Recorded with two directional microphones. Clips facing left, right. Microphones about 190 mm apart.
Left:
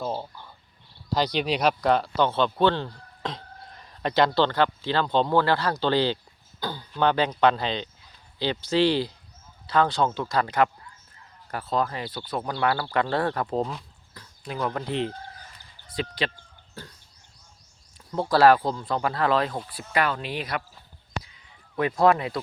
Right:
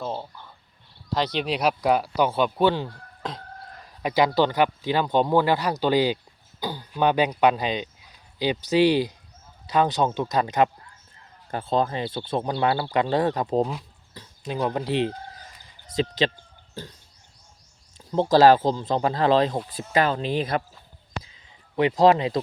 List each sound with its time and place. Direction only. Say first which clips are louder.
0.0 s speech: left 1 dB; 5° left (ahead or behind); by 16.3 s 20° right (ahead or behind)
17.9 s speech: right 5 dB; 25° right (ahead or behind)
21.2 s a sound: even; 25° right (ahead or behind)